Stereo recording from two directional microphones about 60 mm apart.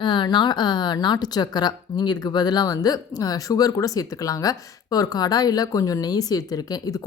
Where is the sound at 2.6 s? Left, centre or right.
Left.